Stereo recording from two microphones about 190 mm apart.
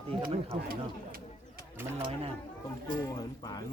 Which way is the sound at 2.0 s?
30° right (ahead or behind).